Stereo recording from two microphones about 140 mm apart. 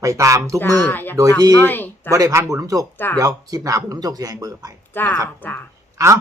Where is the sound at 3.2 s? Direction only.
25° right (ahead or behind).